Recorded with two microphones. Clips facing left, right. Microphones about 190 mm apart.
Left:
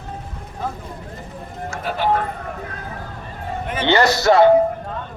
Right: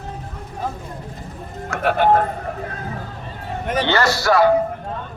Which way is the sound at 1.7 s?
65° right (ahead or behind).